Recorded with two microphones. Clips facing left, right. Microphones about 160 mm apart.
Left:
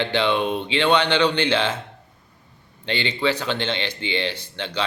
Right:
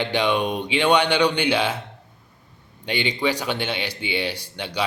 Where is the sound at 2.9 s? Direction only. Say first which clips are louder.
Even; 15° right (ahead or behind).